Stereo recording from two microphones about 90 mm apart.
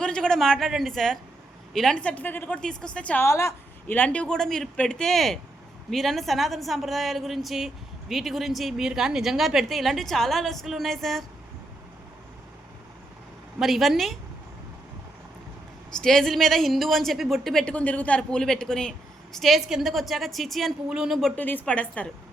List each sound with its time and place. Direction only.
0.0 s a man's voice: 10° left (ahead or behind)
3.2 s a woman's voice: 35° left (ahead or behind)
3.8 s a woman's voice: 20° left (ahead or behind); by 11.3 s centre (ahead or behind)
13.6 s a man's voice: centre (ahead or behind)
15.9 s a man's voice: 5° left (ahead or behind)
17.7 s a man's voice: 15° left (ahead or behind)
21.3 s a woman's voice: 20° left (ahead or behind)